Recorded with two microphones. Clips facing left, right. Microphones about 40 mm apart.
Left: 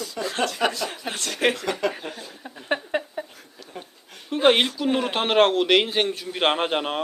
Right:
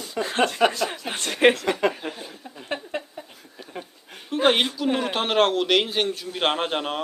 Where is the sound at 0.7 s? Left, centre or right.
Right.